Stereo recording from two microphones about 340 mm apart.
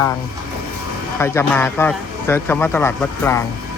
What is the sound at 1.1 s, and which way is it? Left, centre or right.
Speech, centre.